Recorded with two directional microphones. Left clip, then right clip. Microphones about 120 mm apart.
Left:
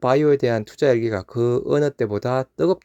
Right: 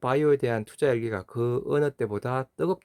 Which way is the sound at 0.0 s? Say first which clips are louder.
Left 6 dB; 30° left (ahead or behind).